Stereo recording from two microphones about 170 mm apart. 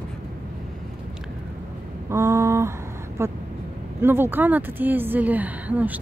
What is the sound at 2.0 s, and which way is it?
A woman's voice, 15° right (ahead or behind).